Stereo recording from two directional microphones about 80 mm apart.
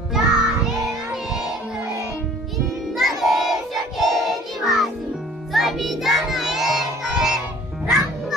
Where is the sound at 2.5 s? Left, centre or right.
Centre.